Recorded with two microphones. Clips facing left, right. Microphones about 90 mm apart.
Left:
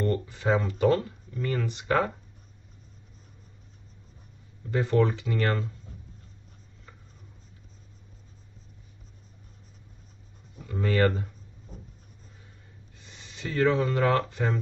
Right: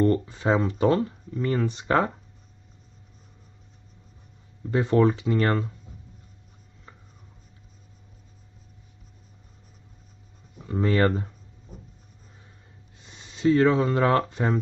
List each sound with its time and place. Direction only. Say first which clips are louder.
0.0 s speech: right 5 dB; 30° right (ahead or behind)
4.7 s speech: right 4 dB; 25° right (ahead or behind)
10.6 s speech: right 2 dB; 30° right (ahead or behind)
13.0 s speech: right 15 dB; 20° right (ahead or behind)